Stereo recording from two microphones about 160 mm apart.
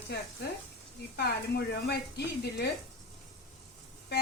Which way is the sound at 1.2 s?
90° left.